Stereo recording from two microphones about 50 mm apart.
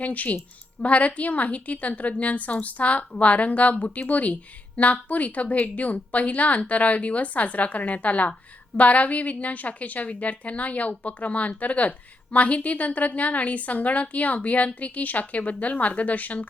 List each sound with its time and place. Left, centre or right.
0.0 s a woman's voice: left